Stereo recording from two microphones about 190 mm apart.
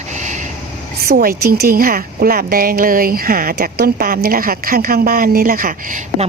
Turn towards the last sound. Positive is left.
turn(degrees=-50)  # may be behind; listen again after turning